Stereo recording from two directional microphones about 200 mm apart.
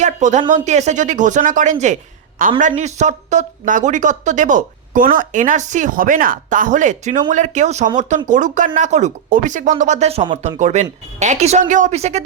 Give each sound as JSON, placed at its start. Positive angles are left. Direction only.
{"t": 0.0, "sound": "speech", "side_deg": -35}
{"t": 10.6, "sound": "speech", "side_deg": -35}